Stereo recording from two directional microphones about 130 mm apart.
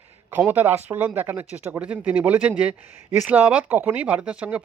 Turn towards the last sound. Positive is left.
turn(degrees=-10)  # may be behind; listen again after turning